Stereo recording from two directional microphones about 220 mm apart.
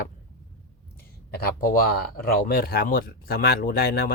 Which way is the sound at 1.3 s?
45° left (ahead or behind).